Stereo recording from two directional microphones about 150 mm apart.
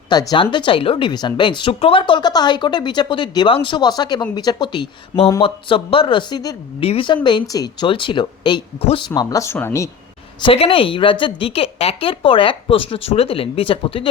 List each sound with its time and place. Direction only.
0.1 s a woman's voice: 25° left (ahead or behind)
9.0 s speech: 25° left (ahead or behind)
10.4 s a woman's voice: 40° left (ahead or behind)